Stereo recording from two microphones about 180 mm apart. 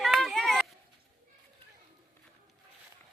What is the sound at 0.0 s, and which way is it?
Run, centre (ahead or behind).